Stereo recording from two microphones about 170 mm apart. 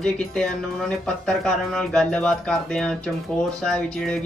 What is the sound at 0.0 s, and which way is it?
Speech, 5° left (ahead or behind).